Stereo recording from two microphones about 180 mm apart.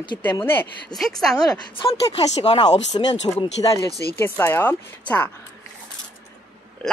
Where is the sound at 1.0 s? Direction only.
Centre (ahead or behind).